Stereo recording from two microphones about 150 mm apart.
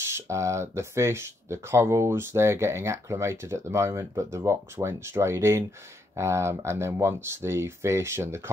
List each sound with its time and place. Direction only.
0.0 s speech: 20° right (ahead or behind)